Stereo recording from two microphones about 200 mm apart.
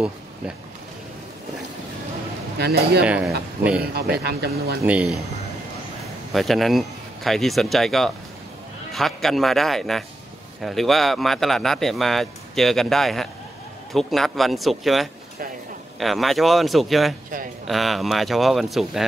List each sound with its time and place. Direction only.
2.6 s speech: 55° right (ahead or behind)
3.1 s speech: 5° right (ahead or behind)
4.2 s speech: 50° right (ahead or behind)
4.8 s speech: 5° right (ahead or behind)
6.3 s speech: centre (ahead or behind)